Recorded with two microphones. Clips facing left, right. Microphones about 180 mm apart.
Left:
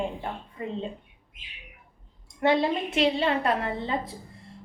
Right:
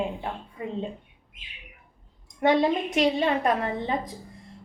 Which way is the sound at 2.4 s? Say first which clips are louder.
Right 2 dB; 15° right (ahead or behind).